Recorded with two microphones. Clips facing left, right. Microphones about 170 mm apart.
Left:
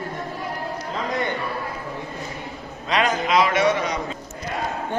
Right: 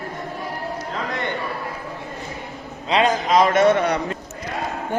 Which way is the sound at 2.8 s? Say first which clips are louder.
Right 3 dB; 30° right (ahead or behind).